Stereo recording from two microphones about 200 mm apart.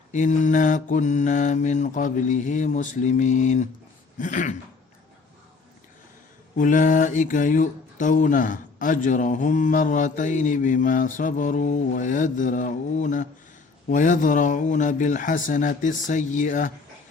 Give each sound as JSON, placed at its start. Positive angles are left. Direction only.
{"t": 0.1, "sound": "speech", "side_deg": 40}
{"t": 6.6, "sound": "speech", "side_deg": 40}